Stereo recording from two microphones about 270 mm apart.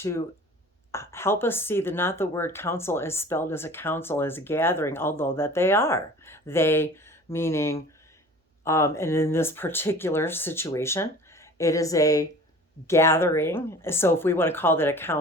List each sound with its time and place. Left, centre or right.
0.9 s a woman's voice: centre